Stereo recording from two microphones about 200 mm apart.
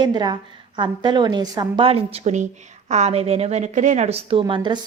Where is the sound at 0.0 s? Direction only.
20° right (ahead or behind).